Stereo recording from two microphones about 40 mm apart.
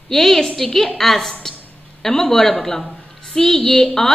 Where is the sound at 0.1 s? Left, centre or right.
Centre.